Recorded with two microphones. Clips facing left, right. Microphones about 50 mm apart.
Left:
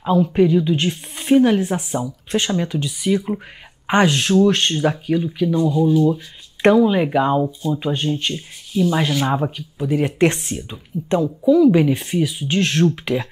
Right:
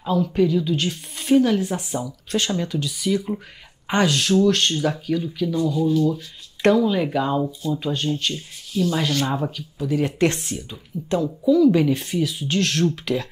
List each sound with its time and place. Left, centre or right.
0.0 s speech: left
7.4 s speech: centre
7.8 s speech: left
11.4 s speech: centre